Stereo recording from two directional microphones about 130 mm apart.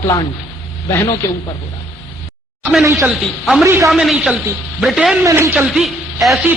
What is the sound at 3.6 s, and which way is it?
Speech, 25° right (ahead or behind).